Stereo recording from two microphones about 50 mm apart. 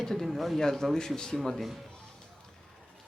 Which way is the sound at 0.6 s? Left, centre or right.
Centre.